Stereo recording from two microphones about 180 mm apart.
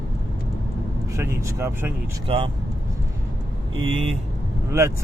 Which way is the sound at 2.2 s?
30° right (ahead or behind).